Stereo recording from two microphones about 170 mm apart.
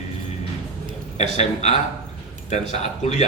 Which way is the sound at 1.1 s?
40° left (ahead or behind).